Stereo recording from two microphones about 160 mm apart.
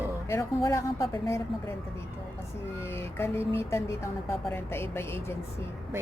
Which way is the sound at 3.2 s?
15° left (ahead or behind).